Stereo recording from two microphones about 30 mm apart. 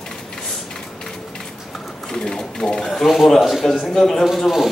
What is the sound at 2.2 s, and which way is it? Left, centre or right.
Sewing machine, left.